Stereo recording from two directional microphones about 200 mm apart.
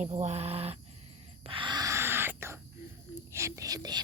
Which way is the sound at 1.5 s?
25° right (ahead or behind).